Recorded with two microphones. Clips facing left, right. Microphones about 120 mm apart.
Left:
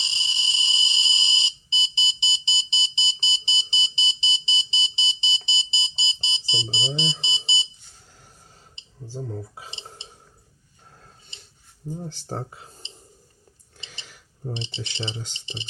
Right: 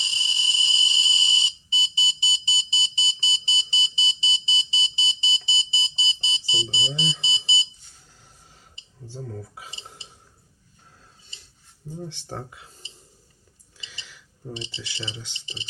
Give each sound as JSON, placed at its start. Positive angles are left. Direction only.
{"t": 0.0, "sound": "smoke detector", "side_deg": 25}
{"t": 9.3, "sound": "a sound", "side_deg": 25}
{"t": 11.9, "sound": "speech", "side_deg": 40}
{"t": 13.7, "sound": "a sound", "side_deg": 50}
{"t": 14.5, "sound": "speech", "side_deg": 25}
{"t": 15.1, "sound": "speech", "side_deg": 45}